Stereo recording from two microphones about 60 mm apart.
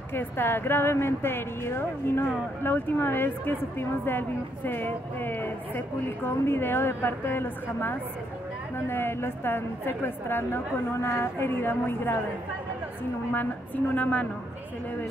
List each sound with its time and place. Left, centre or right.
0.1 s a woman's voice: left
13.9 s a woman's voice: left